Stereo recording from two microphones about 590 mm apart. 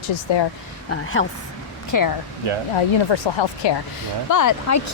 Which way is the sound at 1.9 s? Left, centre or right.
Left.